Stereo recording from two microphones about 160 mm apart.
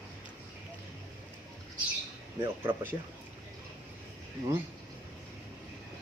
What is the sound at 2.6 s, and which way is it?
Speech, 15° right (ahead or behind).